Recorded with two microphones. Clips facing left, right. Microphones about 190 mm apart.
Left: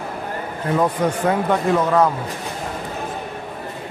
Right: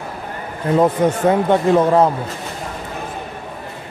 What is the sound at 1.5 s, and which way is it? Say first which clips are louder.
Speech: right 4 dB; 30° right (ahead or behind).